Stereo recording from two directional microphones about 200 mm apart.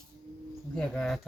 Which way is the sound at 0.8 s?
5° left (ahead or behind).